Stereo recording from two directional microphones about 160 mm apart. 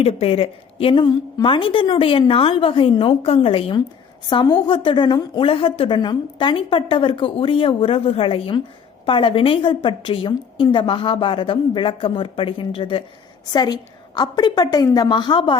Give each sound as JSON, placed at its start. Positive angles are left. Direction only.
{"t": 0.0, "sound": "a woman's voice", "side_deg": 40}